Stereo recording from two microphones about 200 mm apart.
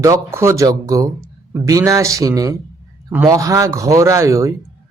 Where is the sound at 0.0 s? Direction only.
15° right (ahead or behind).